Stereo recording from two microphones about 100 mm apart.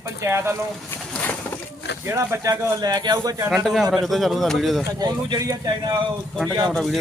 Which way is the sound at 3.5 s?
Centre (ahead or behind).